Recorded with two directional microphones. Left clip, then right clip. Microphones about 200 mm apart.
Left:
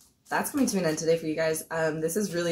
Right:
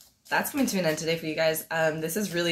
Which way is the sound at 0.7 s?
10° left (ahead or behind).